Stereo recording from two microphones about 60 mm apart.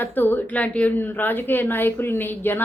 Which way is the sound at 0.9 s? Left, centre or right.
Left.